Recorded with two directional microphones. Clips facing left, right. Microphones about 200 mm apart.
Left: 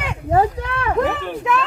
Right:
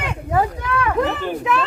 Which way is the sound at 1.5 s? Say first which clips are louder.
Left 1 dB; centre (ahead or behind).